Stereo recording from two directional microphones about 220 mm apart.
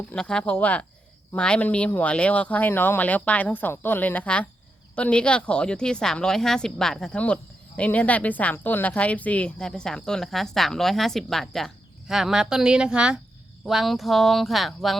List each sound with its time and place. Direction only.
0.1 s speech: 5° left (ahead or behind)